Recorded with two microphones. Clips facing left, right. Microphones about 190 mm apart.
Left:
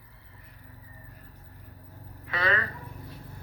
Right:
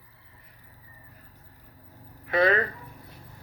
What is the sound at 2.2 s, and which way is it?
Speech, 50° right (ahead or behind).